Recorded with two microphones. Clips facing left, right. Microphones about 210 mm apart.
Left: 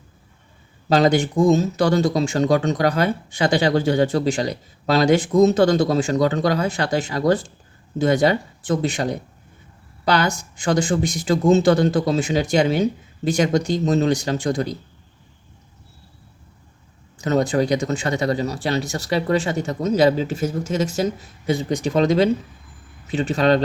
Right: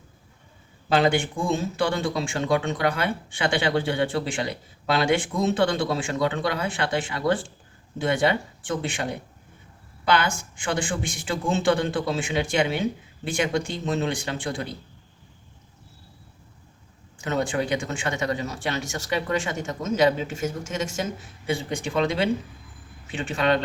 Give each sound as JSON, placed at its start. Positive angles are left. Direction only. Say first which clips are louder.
{"t": 0.9, "sound": "speech", "louder": "left 5 dB", "side_deg": 40}
{"t": 17.2, "sound": "speech", "louder": "left 7 dB", "side_deg": 40}